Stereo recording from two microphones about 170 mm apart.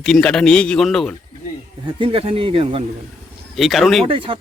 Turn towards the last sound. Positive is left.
turn(degrees=-30)  # may be behind; listen again after turning